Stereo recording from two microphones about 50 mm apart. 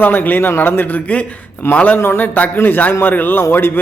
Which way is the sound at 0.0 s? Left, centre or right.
Left.